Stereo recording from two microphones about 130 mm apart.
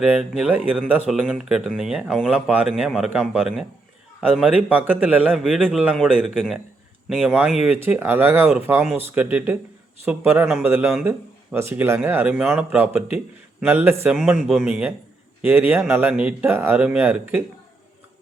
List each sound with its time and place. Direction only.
0.0 s speech: 5° right (ahead or behind)
5.6 s speech: 10° right (ahead or behind)
6.3 s speech: 5° left (ahead or behind)
7.3 s speech: 10° right (ahead or behind)